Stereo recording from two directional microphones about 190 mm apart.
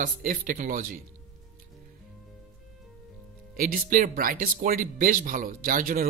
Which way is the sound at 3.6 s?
50° right (ahead or behind).